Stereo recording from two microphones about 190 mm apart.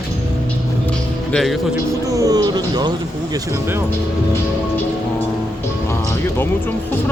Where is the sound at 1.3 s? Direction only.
5° left (ahead or behind).